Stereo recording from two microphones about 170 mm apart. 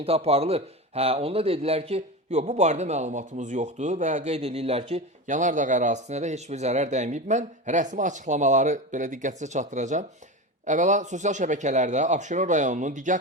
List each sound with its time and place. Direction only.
0.0 s speech: 35° right (ahead or behind)